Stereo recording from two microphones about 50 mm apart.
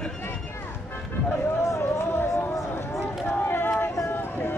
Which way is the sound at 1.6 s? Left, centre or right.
Left.